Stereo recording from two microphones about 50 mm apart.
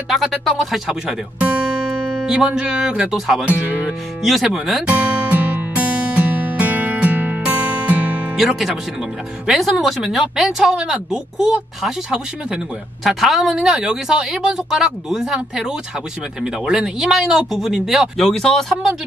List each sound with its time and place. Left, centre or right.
0.1 s speech: centre
2.2 s speech: centre
4.8 s music: right
8.4 s speech: centre
18.2 s speech: centre